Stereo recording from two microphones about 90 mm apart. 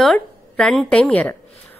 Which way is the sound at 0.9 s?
15° left (ahead or behind).